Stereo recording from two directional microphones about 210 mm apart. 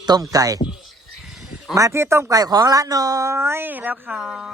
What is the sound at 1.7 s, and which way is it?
Speech, 15° right (ahead or behind).